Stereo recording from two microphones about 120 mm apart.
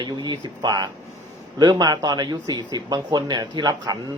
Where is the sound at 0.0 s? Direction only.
35° right (ahead or behind).